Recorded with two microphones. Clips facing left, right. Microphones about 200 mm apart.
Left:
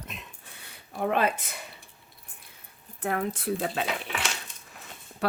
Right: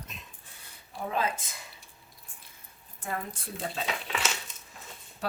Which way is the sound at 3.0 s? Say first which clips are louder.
Left 7 dB; 70° left (ahead or behind).